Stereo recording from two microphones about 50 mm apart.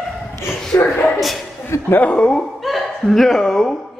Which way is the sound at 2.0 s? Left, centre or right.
Centre.